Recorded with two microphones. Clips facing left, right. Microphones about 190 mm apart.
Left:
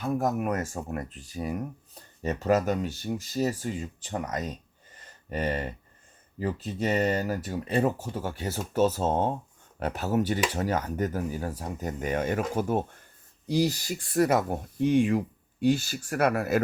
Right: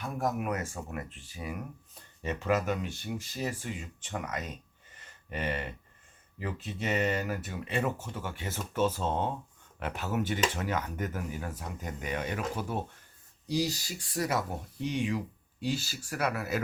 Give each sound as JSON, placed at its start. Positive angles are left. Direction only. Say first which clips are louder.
{"t": 0.0, "sound": "speech", "louder": "left 5 dB", "side_deg": 40}
{"t": 4.9, "sound": "a sound", "louder": "left 5 dB", "side_deg": 40}
{"t": 6.4, "sound": "speech", "louder": "left 6 dB", "side_deg": 35}